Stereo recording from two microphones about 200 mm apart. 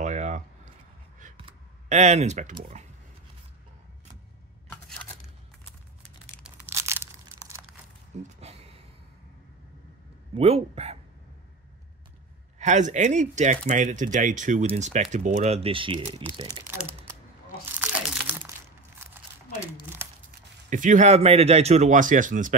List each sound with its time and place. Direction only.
0.0 s a sound: 35° right (ahead or behind)
1.3 s computer keyboard: 30° right (ahead or behind)
6.4 s crumpling: 10° right (ahead or behind)
8.4 s a sound: 30° right (ahead or behind)
10.3 s speech: 30° right (ahead or behind)
12.5 s speech: 35° right (ahead or behind); by 16.6 s 20° right (ahead or behind)
17.7 s crumpling: 5° right (ahead or behind)
20.2 s speech: 40° right (ahead or behind)